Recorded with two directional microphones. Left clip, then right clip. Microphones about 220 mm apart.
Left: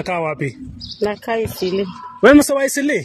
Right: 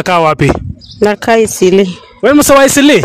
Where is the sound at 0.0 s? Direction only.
55° right (ahead or behind).